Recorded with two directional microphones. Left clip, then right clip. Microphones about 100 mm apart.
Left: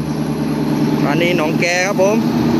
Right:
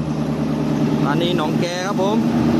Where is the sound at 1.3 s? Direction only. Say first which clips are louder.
Left 4 dB; 5° right (ahead or behind).